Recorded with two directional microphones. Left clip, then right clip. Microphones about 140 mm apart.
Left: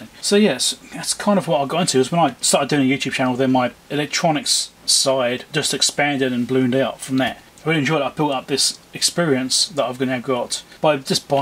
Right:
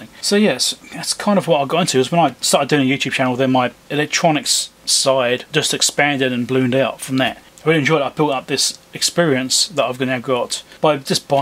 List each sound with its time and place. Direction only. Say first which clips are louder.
0.2 s speech: right 1 dB; 15° right (ahead or behind)